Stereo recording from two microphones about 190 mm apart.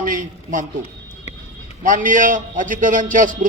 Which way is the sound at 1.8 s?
45° right (ahead or behind).